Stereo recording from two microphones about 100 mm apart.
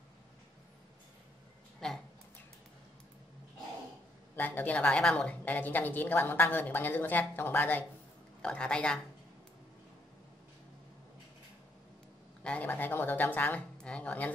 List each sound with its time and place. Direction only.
1.8 s speech: 5° left (ahead or behind)
4.4 s a woman's voice: 15° left (ahead or behind)
12.4 s a woman's voice: 15° left (ahead or behind)